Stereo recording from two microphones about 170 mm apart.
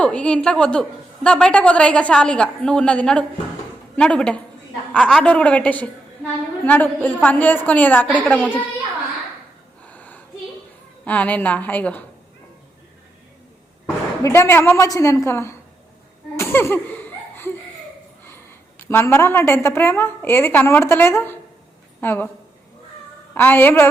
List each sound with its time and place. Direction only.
0.0 s a woman's voice: 5° left (ahead or behind)
9.8 s a sound: 10° left (ahead or behind)
11.0 s a woman's voice: 10° left (ahead or behind)
14.2 s a woman's voice: 15° left (ahead or behind)
16.4 s laughter: 15° left (ahead or behind)
18.3 s a woman's voice: 15° left (ahead or behind)
23.3 s a woman's voice: 10° left (ahead or behind)